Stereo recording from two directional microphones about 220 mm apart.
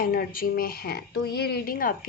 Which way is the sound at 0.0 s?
40° left (ahead or behind).